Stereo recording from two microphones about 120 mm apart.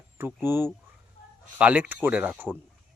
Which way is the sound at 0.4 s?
20° right (ahead or behind).